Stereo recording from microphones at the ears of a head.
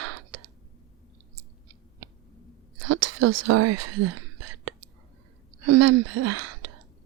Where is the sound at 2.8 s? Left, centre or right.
Right.